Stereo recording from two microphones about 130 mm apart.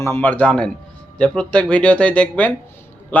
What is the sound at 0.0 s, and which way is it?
Speech, 15° left (ahead or behind).